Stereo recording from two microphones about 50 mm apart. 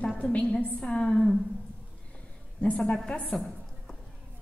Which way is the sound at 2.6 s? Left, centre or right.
Left.